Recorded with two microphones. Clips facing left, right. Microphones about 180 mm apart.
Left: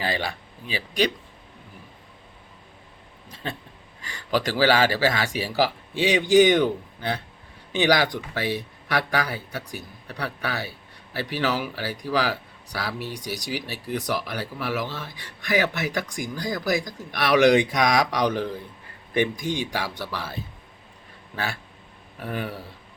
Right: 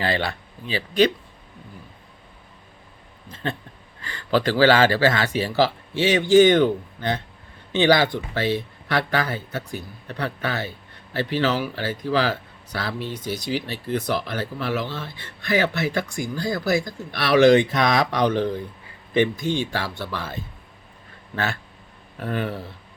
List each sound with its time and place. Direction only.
0.0 s speech: 10° left (ahead or behind)
4.0 s speech: 10° left (ahead or behind)